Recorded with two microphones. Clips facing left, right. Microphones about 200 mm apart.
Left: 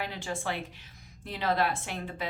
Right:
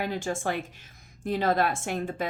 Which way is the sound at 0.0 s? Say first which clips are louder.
Right 5 dB; 45° right (ahead or behind).